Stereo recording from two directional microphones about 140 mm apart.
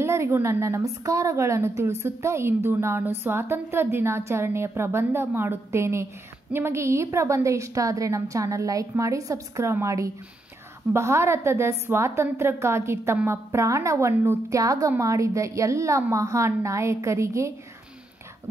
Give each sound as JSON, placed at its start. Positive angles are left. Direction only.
{"t": 0.0, "sound": "a woman's voice", "side_deg": -20}